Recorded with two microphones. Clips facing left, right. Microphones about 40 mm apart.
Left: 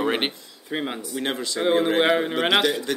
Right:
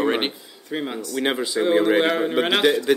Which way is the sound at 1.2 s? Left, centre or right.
Centre.